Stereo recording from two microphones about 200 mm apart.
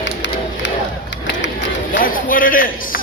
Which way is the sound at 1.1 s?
65° left (ahead or behind).